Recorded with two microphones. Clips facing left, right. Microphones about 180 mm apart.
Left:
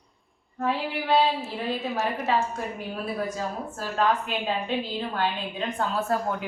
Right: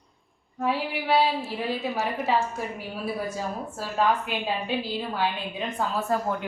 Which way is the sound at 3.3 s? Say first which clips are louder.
Even; 10° right (ahead or behind).